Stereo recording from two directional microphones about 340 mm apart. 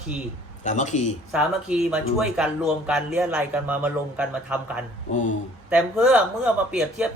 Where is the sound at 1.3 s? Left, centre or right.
Centre.